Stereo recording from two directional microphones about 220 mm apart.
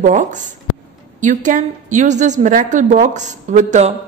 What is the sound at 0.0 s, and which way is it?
A woman's voice, 35° right (ahead or behind).